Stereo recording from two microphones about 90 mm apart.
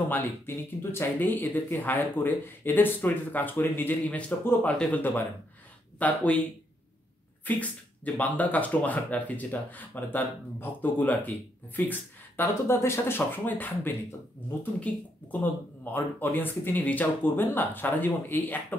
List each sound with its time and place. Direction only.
0.1 s speech: 25° left (ahead or behind)
7.5 s speech: 20° left (ahead or behind)